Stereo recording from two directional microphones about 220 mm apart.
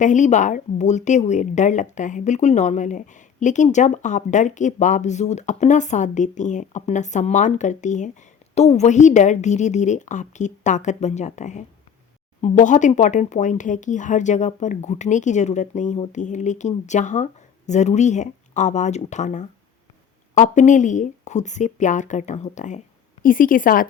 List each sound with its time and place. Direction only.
0.0 s a woman's voice: 35° left (ahead or behind)